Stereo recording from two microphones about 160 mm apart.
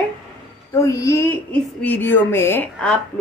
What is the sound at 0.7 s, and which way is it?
A woman's voice, 20° left (ahead or behind).